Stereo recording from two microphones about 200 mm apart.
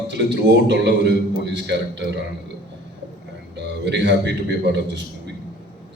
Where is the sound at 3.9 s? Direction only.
60° right (ahead or behind).